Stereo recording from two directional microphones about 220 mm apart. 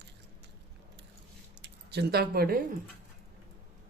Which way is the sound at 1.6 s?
45° right (ahead or behind).